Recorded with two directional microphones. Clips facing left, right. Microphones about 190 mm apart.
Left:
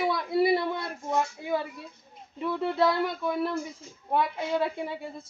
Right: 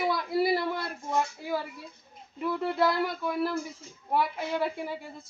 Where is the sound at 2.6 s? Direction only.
Centre (ahead or behind).